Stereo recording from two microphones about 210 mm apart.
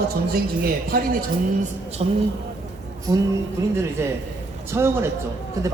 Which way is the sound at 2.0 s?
30° right (ahead or behind).